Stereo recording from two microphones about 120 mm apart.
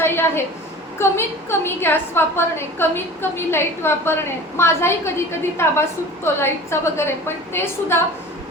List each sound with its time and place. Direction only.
0.0 s a woman's voice: 20° left (ahead or behind)